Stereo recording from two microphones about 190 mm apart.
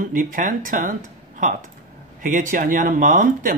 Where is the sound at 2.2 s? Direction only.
45° right (ahead or behind).